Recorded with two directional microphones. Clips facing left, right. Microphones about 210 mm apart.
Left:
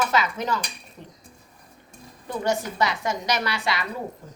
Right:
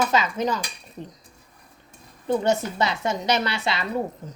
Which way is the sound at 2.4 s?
25° right (ahead or behind).